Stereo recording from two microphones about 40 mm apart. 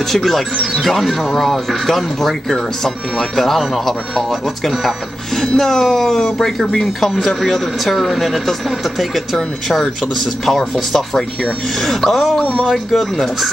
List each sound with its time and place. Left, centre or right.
0.1 s speech: centre
10.9 s speech: centre
12.4 s speech: left
12.6 s speech: centre